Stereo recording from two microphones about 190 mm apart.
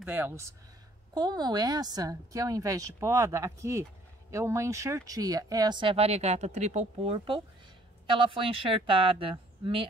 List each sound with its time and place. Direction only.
0.0 s speech: 10° right (ahead or behind); by 9.8 s 25° right (ahead or behind)